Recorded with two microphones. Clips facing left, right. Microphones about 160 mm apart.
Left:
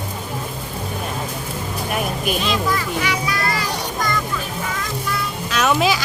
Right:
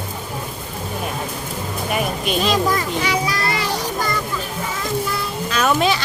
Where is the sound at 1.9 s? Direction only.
Centre (ahead or behind).